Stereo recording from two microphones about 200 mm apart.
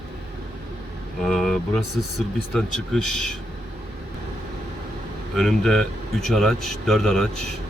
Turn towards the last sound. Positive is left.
turn(degrees=0)  # may be behind; listen again after turning